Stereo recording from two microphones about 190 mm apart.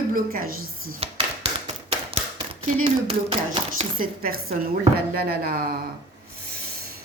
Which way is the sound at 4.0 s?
50° right (ahead or behind).